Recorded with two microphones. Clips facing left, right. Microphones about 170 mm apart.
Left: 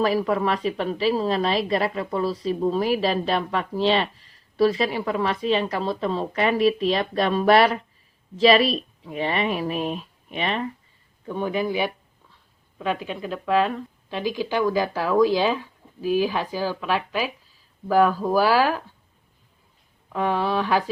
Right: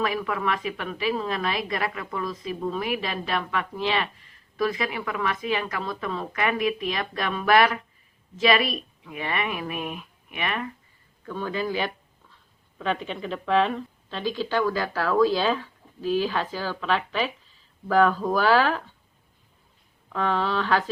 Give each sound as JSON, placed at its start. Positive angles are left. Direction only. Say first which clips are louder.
{"t": 0.0, "sound": "a woman's voice", "louder": "left 5 dB", "side_deg": 35}
{"t": 11.3, "sound": "a woman's voice", "louder": "left 4 dB", "side_deg": 15}
{"t": 20.1, "sound": "a woman's voice", "louder": "left 2 dB", "side_deg": 10}